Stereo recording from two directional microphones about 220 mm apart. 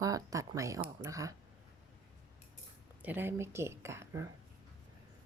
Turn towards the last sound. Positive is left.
turn(degrees=-10)  # may be behind; listen again after turning